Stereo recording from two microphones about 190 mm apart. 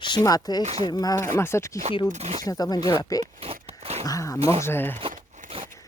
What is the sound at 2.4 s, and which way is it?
Speech, 20° left (ahead or behind).